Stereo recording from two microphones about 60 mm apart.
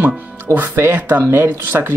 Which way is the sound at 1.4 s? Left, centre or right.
Right.